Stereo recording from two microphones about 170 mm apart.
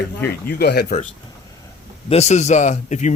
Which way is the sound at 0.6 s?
70° left (ahead or behind).